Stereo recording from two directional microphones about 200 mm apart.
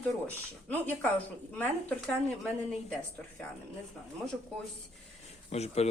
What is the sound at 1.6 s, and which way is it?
A woman's voice, 5° left (ahead or behind).